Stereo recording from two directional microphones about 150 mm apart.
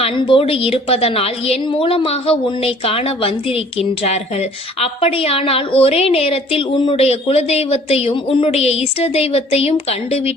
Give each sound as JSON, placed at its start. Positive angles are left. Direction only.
{"t": 0.0, "sound": "a woman's voice", "side_deg": 35}